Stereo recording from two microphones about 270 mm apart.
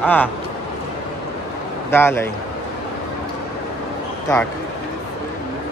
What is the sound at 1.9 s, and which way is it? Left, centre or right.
Speech, centre.